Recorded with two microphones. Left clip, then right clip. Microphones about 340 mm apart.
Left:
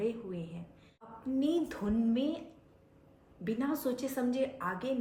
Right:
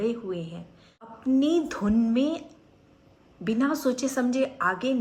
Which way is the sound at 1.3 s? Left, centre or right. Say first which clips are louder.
Right 8 dB; right.